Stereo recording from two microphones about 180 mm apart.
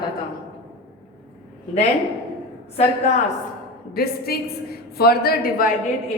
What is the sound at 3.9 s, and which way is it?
A woman's voice, 60° left (ahead or behind).